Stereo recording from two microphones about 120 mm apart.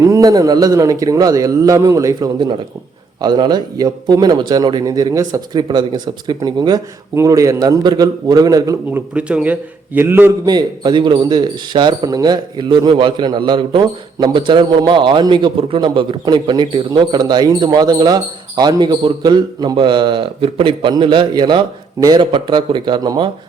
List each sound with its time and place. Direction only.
0.0 s speech: 25° right (ahead or behind)
8.9 s a man's voice: 15° right (ahead or behind)
10.4 s speech: 35° right (ahead or behind)